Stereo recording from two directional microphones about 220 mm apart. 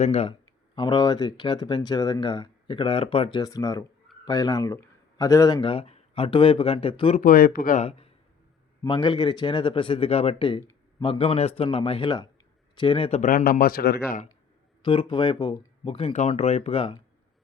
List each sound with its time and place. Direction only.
0.0 s speech: 30° left (ahead or behind)
0.8 s speech: 20° left (ahead or behind)
7.2 s speech: 40° left (ahead or behind)
14.8 s speech: 20° left (ahead or behind)